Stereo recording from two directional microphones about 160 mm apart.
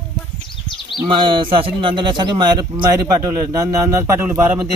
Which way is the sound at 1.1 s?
30° right (ahead or behind).